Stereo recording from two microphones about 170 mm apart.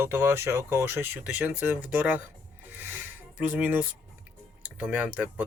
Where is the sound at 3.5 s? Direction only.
10° right (ahead or behind).